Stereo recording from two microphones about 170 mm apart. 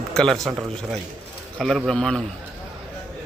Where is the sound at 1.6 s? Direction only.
Centre (ahead or behind).